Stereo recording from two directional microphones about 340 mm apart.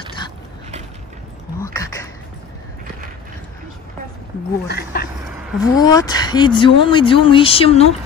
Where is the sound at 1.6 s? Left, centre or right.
Centre.